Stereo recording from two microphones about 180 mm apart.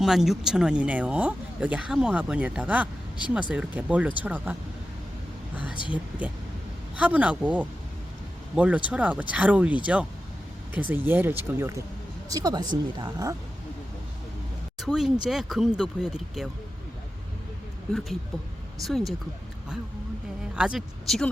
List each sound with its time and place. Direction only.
0.0 s speech: centre (ahead or behind)
5.5 s speech: 10° right (ahead or behind)
14.8 s speech: centre (ahead or behind)
18.9 s speech: centre (ahead or behind)
20.6 s speech: 5° right (ahead or behind)